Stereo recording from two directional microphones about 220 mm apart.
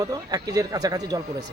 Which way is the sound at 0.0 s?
15° right (ahead or behind).